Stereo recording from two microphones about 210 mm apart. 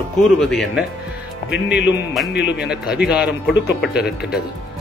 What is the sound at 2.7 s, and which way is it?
Speech, 50° left (ahead or behind).